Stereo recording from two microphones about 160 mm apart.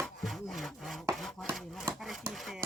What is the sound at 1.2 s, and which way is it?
Chopping, centre (ahead or behind).